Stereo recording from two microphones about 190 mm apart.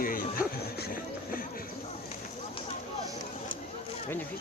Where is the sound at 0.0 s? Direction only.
50° left (ahead or behind).